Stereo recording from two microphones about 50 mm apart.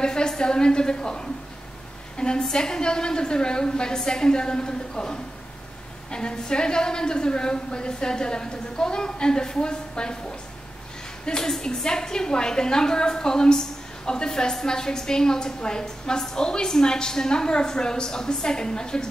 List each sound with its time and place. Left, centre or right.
0.0 s a woman's voice: centre
11.2 s a woman's voice: centre